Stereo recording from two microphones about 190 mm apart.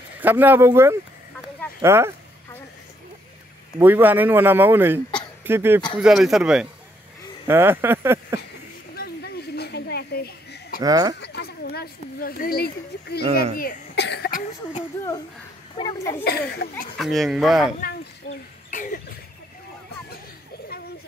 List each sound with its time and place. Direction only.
0.2 s speech: 10° right (ahead or behind)
3.8 s speech: 10° right (ahead or behind)
8.9 s a sound: 55° left (ahead or behind)
10.8 s speech: 20° right (ahead or behind)
11.1 s speech: 60° left (ahead or behind)
15.7 s a child's voice: 25° left (ahead or behind)
16.3 s speech: 55° left (ahead or behind)
16.9 s speech: centre (ahead or behind)
18.7 s a sound: 45° left (ahead or behind)